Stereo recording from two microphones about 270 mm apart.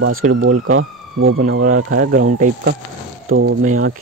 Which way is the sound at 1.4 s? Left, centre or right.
Right.